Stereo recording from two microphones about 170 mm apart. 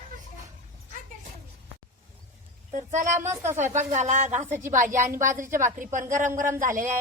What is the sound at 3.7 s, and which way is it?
A woman's voice, 40° right (ahead or behind).